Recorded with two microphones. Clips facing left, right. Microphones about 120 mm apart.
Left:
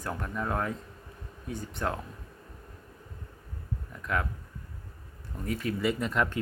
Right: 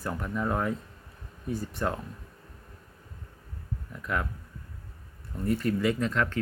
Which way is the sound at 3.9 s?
Centre (ahead or behind).